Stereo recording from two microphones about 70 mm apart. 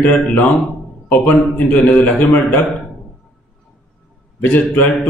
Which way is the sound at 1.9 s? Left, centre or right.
Left.